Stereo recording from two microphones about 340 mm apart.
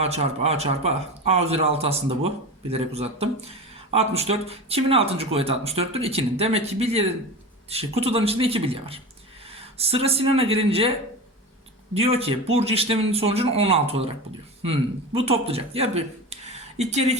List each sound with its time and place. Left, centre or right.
0.0 s speech: centre
11.9 s speech: centre